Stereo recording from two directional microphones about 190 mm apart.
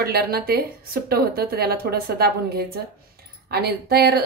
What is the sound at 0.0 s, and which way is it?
A woman's voice, 55° right (ahead or behind).